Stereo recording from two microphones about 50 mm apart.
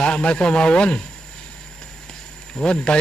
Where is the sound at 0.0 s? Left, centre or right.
Left.